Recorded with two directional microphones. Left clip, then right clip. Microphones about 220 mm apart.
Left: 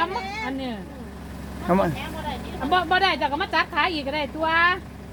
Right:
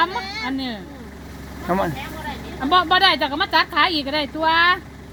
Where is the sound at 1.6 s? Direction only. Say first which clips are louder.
Even; centre (ahead or behind).